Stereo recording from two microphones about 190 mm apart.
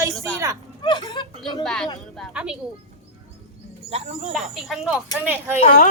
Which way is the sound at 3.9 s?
35° right (ahead or behind).